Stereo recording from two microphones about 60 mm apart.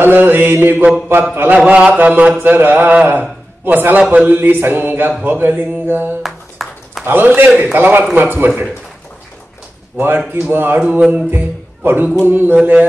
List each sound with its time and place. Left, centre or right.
0.0 s a man's voice: right
1.7 s mantra: right
2.4 s a man's voice: right
6.2 s a sound: centre
7.1 s a man's voice: right
9.9 s a man's voice: right
10.8 s mantra: right
11.2 s a man's voice: right